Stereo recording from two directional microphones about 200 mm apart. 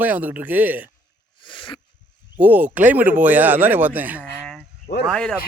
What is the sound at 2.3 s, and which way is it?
Speech, 10° right (ahead or behind).